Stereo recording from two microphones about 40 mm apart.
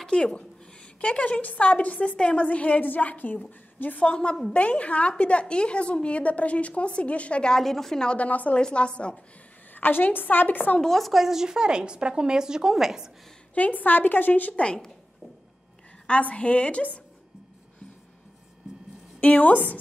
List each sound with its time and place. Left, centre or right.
0.0 s a woman's voice: left
4.0 s a woman's voice: left
7.4 s a woman's voice: centre
8.2 s a woman's voice: left
8.5 s a woman's voice: left
9.8 s a woman's voice: left
10.8 s speech: centre
11.2 s speech: centre
13.6 s a woman's voice: left
14.5 s a woman's voice: left
16.1 s a woman's voice: left
19.1 s a woman's voice: left